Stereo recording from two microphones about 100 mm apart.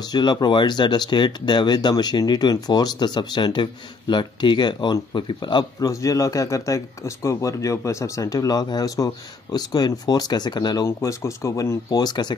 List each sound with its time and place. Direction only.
0.0 s speech: 45° left (ahead or behind)
5.9 s speech: 35° left (ahead or behind)
10.9 s speech: 30° left (ahead or behind)
12.0 s speech: 45° left (ahead or behind)